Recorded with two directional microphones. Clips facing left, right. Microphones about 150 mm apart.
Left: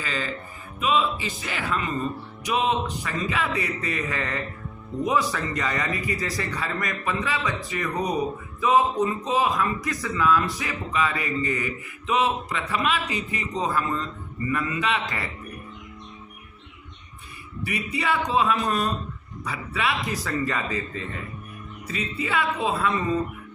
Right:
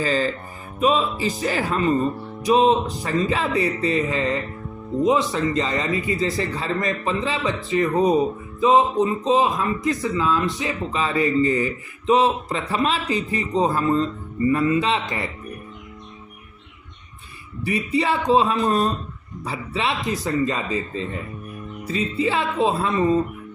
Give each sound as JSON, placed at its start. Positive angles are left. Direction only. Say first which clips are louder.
{"t": 0.0, "sound": "a man's voice", "louder": "right 9 dB", "side_deg": -35}
{"t": 17.7, "sound": "a man's voice", "louder": "right 5 dB", "side_deg": -30}